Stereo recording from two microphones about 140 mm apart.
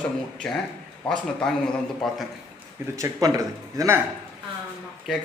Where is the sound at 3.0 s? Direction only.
25° right (ahead or behind).